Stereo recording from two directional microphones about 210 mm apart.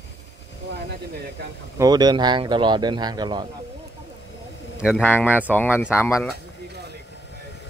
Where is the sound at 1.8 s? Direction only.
20° right (ahead or behind).